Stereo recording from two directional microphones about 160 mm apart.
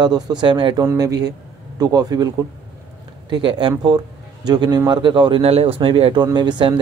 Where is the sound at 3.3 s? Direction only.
30° right (ahead or behind).